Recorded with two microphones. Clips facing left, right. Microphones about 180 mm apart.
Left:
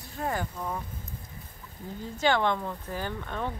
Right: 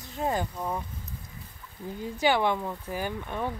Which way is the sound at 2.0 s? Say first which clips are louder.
Right 1 dB; 10° right (ahead or behind).